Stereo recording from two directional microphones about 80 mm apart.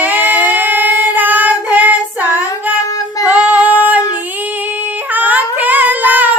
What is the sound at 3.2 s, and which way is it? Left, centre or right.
Female singing, centre.